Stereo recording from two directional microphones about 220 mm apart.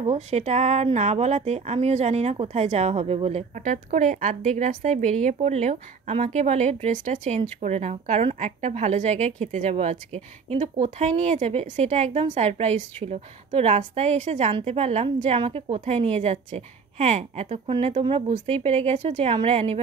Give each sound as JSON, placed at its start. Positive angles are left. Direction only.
{"t": 0.0, "sound": "a woman's voice", "side_deg": -30}